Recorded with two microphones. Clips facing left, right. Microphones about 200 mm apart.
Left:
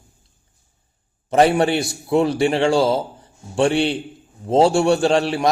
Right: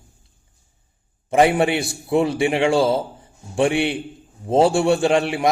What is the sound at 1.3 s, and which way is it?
A man's voice, 15° right (ahead or behind).